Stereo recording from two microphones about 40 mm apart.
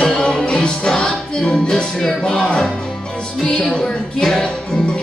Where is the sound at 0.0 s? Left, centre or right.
Left.